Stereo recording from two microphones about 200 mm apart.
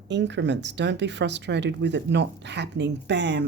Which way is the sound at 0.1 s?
60° right (ahead or behind).